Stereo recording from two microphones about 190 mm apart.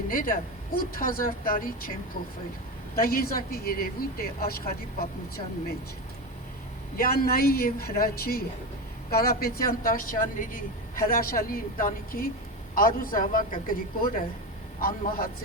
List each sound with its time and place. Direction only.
0.1 s speech: 45° left (ahead or behind)
3.0 s speech: 50° left (ahead or behind)
6.9 s speech: 50° left (ahead or behind)